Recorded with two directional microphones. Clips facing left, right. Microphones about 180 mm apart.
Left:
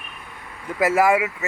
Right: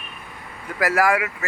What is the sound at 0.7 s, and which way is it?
Speech, 20° left (ahead or behind).